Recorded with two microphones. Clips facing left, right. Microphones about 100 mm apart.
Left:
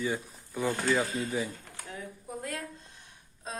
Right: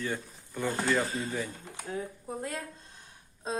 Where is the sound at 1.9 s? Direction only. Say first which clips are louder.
Right 4 dB; 30° right (ahead or behind).